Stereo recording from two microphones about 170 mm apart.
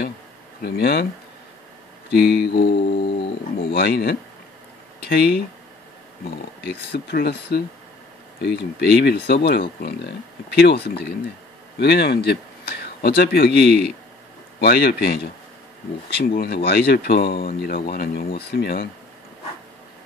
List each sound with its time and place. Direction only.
0.6 s speech: 70° left (ahead or behind)
2.0 s music: 75° left (ahead or behind)
2.5 s speech: 60° left (ahead or behind)
3.5 s speech: 70° left (ahead or behind)
6.6 s speech: 75° left (ahead or behind)
16.3 s speech: 70° left (ahead or behind)